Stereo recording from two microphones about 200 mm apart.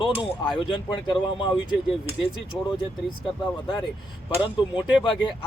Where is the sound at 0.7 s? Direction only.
25° left (ahead or behind).